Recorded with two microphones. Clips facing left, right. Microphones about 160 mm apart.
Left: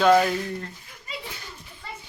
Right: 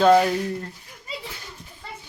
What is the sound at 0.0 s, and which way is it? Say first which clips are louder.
Speech: right 2 dB; 25° right (ahead or behind).